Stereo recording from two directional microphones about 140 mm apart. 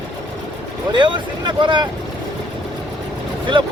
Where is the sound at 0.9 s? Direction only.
35° right (ahead or behind).